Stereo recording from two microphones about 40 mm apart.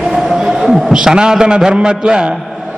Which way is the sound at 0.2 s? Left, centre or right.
Centre.